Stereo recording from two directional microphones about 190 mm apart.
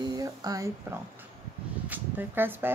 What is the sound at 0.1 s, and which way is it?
Speech, 20° right (ahead or behind).